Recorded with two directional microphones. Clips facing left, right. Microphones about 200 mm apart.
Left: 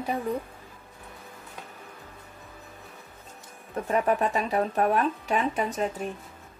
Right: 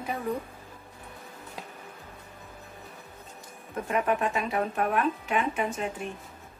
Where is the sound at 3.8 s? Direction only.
35° left (ahead or behind).